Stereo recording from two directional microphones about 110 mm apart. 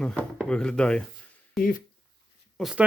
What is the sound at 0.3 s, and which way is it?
Speech, 5° left (ahead or behind).